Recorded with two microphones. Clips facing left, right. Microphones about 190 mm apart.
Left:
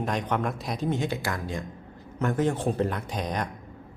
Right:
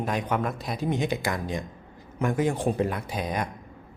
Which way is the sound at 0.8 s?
15° right (ahead or behind).